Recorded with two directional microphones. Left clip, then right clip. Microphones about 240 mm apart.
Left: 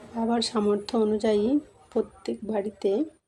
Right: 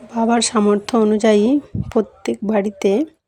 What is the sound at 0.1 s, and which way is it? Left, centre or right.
Speech, right.